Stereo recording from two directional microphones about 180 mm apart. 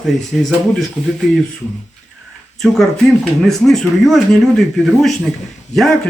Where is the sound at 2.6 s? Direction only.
Centre (ahead or behind).